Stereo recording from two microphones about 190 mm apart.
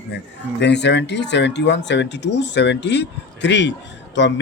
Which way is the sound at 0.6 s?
65° left (ahead or behind).